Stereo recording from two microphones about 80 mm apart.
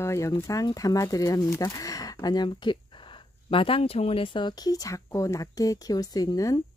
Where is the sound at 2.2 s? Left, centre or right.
Left.